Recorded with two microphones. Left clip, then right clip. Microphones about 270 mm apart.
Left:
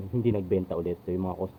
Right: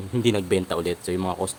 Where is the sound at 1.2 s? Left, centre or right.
Right.